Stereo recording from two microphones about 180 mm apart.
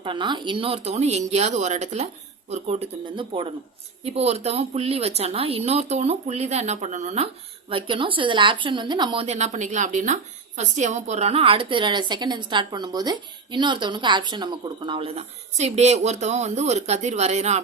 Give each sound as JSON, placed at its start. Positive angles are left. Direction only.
{"t": 0.0, "sound": "a woman's voice", "side_deg": -25}
{"t": 7.7, "sound": "a woman's voice", "side_deg": -30}